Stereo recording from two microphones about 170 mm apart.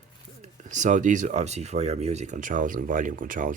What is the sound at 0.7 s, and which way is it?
Speech, 45° right (ahead or behind).